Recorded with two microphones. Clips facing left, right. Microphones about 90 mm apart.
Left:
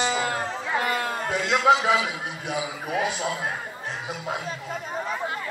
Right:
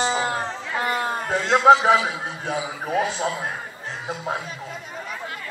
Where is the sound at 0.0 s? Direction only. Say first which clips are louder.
Right 2 dB; 25° right (ahead or behind).